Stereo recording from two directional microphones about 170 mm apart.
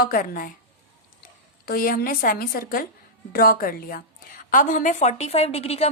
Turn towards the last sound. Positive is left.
turn(degrees=40)  # may be behind; listen again after turning